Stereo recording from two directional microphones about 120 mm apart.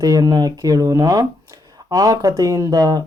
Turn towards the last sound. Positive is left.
turn(degrees=-35)  # may be behind; listen again after turning